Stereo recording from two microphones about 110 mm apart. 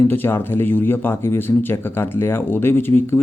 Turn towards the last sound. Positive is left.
turn(degrees=20)  # may be behind; listen again after turning